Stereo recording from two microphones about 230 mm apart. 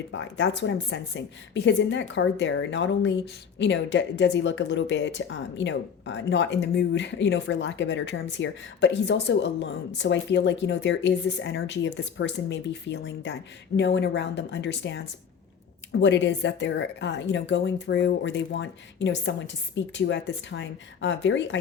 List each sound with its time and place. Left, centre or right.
0.1 s speech: left